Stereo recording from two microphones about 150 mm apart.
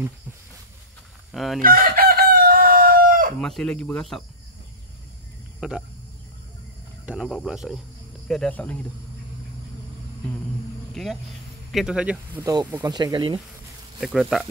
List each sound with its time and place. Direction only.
1.3 s speech: centre (ahead or behind)
1.6 s chicken: 75° right (ahead or behind)
3.3 s speech: 5° left (ahead or behind)
5.6 s speech: 5° right (ahead or behind)
7.1 s speech: centre (ahead or behind)
8.3 s speech: 5° left (ahead or behind)
11.0 s speech: centre (ahead or behind)
12.9 s speech: 30° right (ahead or behind)
13.9 s speech: 5° right (ahead or behind)